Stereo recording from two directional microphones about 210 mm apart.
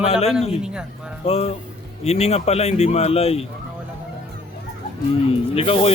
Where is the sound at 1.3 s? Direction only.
30° left (ahead or behind).